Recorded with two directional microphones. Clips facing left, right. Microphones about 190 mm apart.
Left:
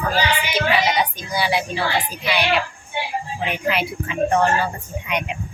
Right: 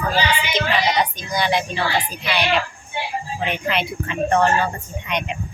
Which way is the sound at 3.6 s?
5° left (ahead or behind).